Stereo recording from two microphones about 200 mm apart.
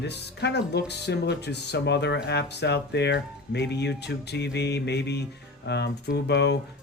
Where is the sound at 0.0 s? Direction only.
60° left (ahead or behind).